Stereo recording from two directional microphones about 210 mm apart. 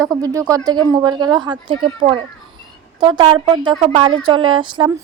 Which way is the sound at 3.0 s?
20° right (ahead or behind).